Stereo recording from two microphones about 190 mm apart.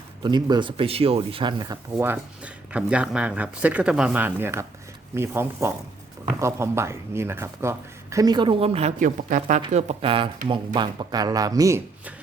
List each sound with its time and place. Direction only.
0.2 s speech: 20° right (ahead or behind); by 9.6 s 40° right (ahead or behind)
9.6 s speech: 30° right (ahead or behind); by 12.1 s 15° right (ahead or behind)